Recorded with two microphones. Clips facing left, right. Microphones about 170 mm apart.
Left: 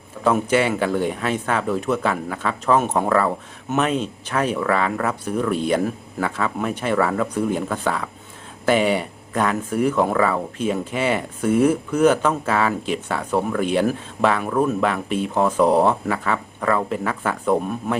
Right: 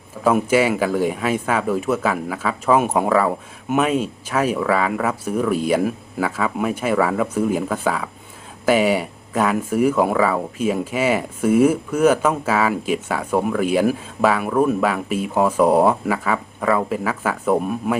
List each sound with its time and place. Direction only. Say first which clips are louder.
0.3 s speech: right 2 dB; 5° right (ahead or behind)